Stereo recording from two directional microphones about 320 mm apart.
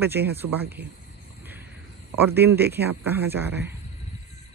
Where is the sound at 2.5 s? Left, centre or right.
Centre.